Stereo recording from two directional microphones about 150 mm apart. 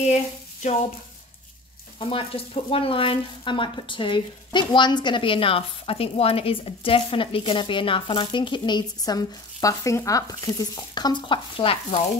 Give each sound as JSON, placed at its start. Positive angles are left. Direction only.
{"t": 0.1, "sound": "speech", "side_deg": 45}
{"t": 2.0, "sound": "speech", "side_deg": 35}